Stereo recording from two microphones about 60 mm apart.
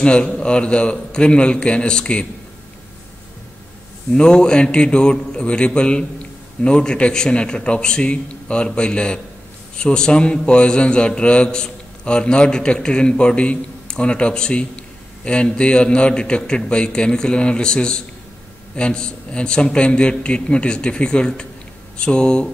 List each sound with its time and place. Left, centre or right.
0.0 s speech: centre
4.1 s speech: centre